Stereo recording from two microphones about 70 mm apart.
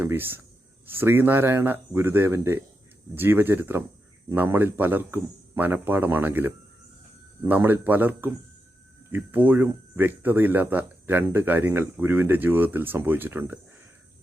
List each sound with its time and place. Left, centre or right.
0.0 s speech: right